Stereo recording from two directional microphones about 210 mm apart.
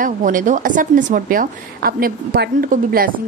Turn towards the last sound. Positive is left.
turn(degrees=-45)  # may be behind; listen again after turning